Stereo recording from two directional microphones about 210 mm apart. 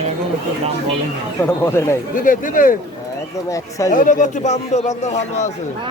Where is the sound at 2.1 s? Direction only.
40° left (ahead or behind).